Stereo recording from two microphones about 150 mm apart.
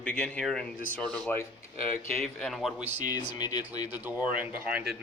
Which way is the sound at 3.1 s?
30° left (ahead or behind).